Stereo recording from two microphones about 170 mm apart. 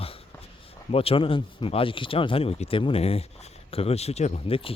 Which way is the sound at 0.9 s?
35° left (ahead or behind).